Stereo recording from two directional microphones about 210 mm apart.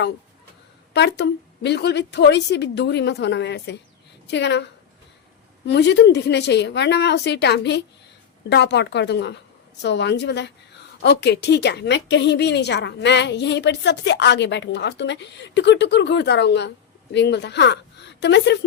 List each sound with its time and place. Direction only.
0.9 s a woman's voice: 55° left (ahead or behind)